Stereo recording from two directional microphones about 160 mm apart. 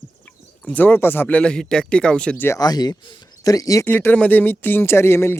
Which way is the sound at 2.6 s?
25° left (ahead or behind).